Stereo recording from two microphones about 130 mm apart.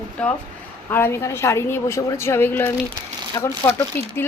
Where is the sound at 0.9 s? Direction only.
20° left (ahead or behind).